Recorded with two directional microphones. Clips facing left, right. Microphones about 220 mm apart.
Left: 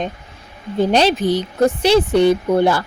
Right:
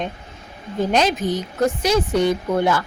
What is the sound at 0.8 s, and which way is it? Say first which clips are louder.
A woman's voice: left 4 dB; 30° left (ahead or behind).